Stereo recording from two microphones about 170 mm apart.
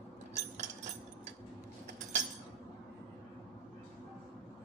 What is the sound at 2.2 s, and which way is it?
Chink, 40° right (ahead or behind).